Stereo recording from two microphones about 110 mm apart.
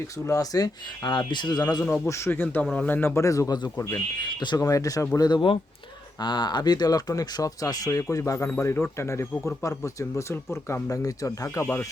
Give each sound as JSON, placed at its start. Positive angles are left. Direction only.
{"t": 0.3, "sound": "speech", "side_deg": 35}
{"t": 2.0, "sound": "speech", "side_deg": 25}